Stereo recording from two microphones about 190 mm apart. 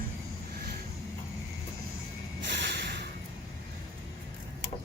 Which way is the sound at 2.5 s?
70° right (ahead or behind).